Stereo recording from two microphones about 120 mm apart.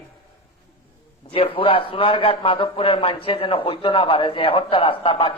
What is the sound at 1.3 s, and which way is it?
A man's voice, 45° left (ahead or behind).